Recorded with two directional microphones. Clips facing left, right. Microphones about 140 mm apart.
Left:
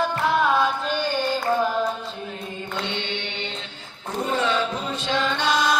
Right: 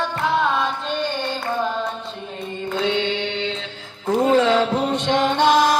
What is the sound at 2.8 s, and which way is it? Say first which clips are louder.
Mantra: right 9 dB; 90° right.